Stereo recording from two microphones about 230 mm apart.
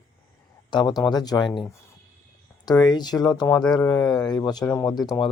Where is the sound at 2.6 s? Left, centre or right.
Centre.